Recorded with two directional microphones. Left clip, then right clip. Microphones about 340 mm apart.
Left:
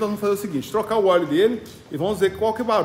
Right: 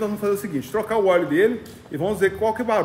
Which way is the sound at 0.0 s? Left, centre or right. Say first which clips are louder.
Left 1 dB; centre.